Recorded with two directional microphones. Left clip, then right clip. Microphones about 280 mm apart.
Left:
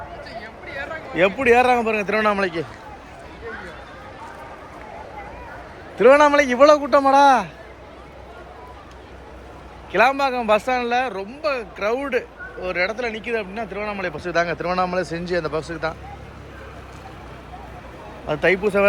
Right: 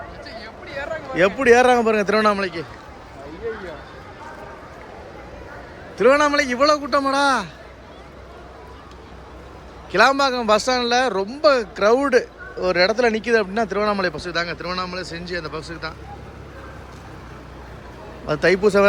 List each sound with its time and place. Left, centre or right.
1.4 s speech: centre
6.0 s a man's voice: centre
9.9 s speech: centre
14.3 s a man's voice: centre
18.3 s speech: centre